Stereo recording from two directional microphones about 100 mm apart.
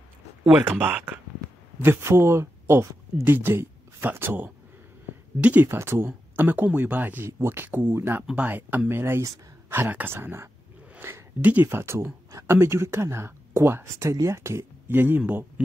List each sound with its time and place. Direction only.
0.5 s speech: 15° right (ahead or behind)